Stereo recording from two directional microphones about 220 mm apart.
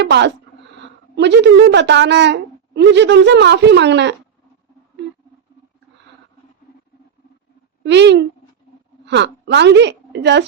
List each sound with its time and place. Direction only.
0.0 s a woman's voice: 50° right (ahead or behind)
7.9 s a woman's voice: 50° right (ahead or behind)